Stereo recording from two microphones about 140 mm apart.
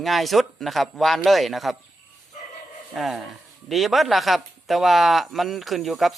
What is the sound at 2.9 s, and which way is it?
Speech, centre (ahead or behind).